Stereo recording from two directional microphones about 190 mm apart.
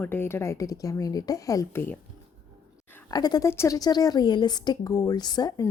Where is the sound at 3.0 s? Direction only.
20° left (ahead or behind).